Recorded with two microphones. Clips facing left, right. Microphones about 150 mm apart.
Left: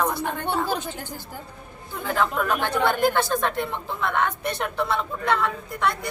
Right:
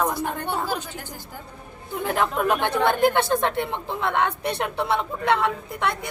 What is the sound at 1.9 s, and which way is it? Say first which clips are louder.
A woman's voice: right 1 dB; 15° right (ahead or behind).